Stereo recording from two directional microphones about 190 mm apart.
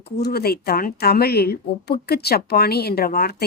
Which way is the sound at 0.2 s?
55° left (ahead or behind).